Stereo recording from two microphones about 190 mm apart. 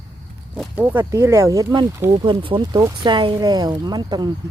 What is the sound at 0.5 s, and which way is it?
Speech, 10° right (ahead or behind).